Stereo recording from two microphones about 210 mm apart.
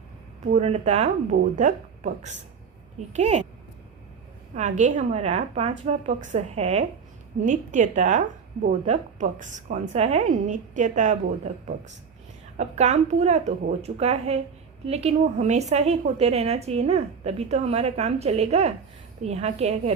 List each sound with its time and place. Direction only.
0.5 s a woman's voice: 30° right (ahead or behind)
4.8 s a woman's voice: 35° right (ahead or behind)
12.5 s a woman's voice: 30° right (ahead or behind)